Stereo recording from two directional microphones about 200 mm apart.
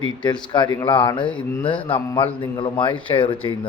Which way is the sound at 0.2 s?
25° left (ahead or behind).